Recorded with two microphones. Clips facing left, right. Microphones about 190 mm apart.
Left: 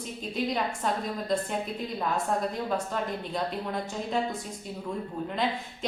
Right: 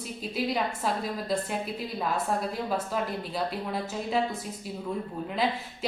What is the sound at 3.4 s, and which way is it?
Speech, 5° right (ahead or behind).